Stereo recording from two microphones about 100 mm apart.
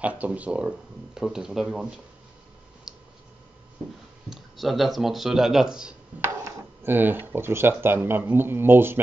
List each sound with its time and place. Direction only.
0.0 s speech: 15° right (ahead or behind)
2.9 s a sound: 5° right (ahead or behind)
4.3 s speech: centre (ahead or behind)
6.2 s speech: 25° right (ahead or behind)